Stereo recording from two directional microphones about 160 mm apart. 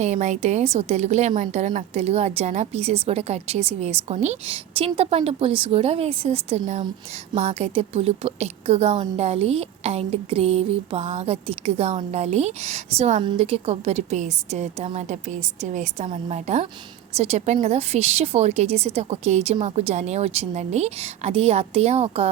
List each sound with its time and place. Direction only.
0.0 s a woman's voice: 45° right (ahead or behind)